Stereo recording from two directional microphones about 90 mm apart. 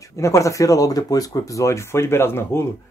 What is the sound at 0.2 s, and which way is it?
Speech, 35° left (ahead or behind).